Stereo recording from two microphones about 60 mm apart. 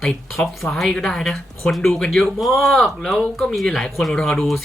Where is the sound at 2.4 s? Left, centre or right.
Centre.